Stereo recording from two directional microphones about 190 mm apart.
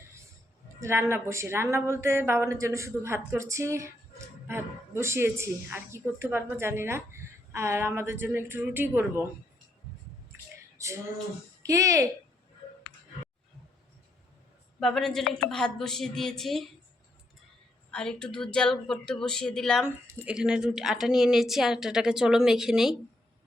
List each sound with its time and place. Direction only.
0.8 s speech: 15° right (ahead or behind)
10.8 s a sound: 15° right (ahead or behind)
11.6 s speech: 15° right (ahead or behind)
14.8 s a woman's voice: centre (ahead or behind)
17.9 s a woman's voice: 5° left (ahead or behind)